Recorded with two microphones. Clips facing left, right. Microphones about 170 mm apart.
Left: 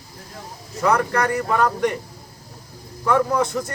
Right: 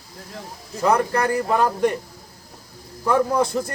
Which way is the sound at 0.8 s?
30° right (ahead or behind).